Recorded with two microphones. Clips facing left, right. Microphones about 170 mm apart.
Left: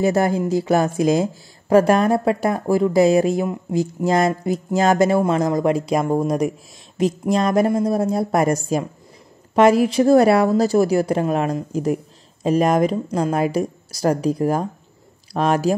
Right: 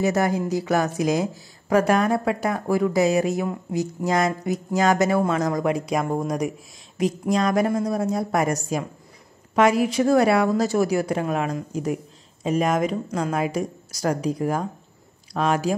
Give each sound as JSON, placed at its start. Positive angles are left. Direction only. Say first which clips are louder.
{"t": 0.0, "sound": "a woman's voice", "louder": "left 3 dB", "side_deg": 30}